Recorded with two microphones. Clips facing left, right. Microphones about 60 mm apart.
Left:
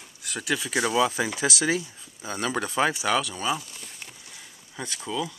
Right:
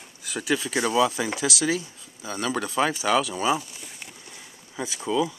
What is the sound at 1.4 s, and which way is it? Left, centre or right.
Speech, left.